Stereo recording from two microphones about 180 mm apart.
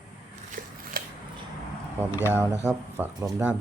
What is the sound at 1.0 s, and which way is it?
Scissors, 50° right (ahead or behind).